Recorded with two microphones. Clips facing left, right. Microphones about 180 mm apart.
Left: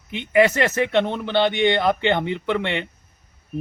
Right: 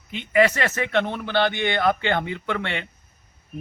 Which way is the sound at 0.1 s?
20° left (ahead or behind).